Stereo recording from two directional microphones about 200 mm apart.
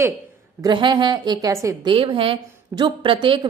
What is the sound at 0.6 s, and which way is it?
A woman's voice, 20° right (ahead or behind).